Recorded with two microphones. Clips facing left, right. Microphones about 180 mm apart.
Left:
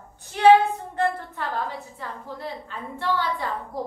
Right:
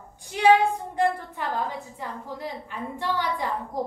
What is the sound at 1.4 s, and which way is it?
A woman's voice, 15° right (ahead or behind).